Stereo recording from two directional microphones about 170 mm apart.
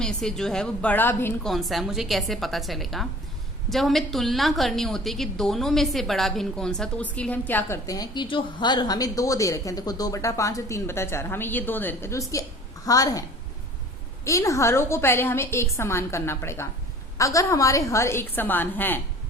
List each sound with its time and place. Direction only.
0.0 s a woman's voice: 5° left (ahead or behind)
1.5 s a woman's voice: centre (ahead or behind); by 13.2 s 20° left (ahead or behind)
14.3 s a woman's voice: 20° left (ahead or behind)